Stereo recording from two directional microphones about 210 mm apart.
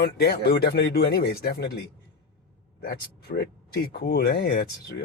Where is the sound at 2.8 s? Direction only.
45° left (ahead or behind).